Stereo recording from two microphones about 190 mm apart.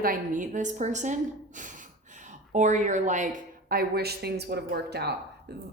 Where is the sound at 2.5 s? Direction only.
40° right (ahead or behind).